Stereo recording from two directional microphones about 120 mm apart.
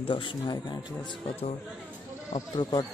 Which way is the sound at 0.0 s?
45° left (ahead or behind).